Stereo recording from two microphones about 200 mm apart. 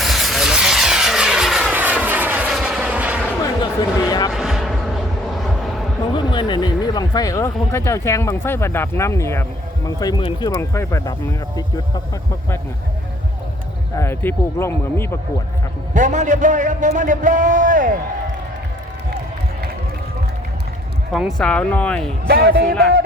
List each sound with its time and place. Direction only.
0.0 s vehicle: centre (ahead or behind)
3.4 s a sound: 20° left (ahead or behind)
4.3 s vehicle: centre (ahead or behind)
6.1 s speech: 20° left (ahead or behind)
13.9 s speech: 10° left (ahead or behind)
16.0 s a man's voice: 40° right (ahead or behind)
21.1 s speech: centre (ahead or behind)
22.3 s speech: 50° right (ahead or behind)